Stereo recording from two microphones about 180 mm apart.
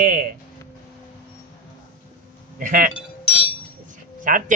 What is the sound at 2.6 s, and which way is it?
Speech, 50° right (ahead or behind).